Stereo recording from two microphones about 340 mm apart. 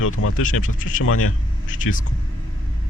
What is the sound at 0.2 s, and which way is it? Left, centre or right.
Speech, left.